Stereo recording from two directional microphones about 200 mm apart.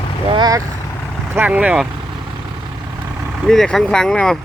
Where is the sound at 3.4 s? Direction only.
Centre (ahead or behind).